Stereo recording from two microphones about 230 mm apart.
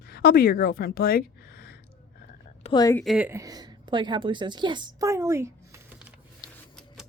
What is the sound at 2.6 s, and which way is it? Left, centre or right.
Speech, centre.